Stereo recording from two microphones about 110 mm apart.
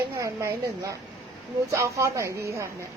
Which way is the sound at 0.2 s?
30° right (ahead or behind).